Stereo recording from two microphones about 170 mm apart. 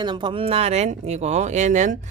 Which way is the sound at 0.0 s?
25° right (ahead or behind).